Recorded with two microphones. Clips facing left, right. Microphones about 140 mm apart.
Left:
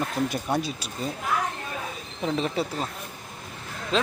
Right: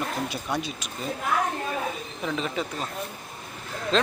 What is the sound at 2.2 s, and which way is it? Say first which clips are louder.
Speech: left 3 dB; 30° left (ahead or behind).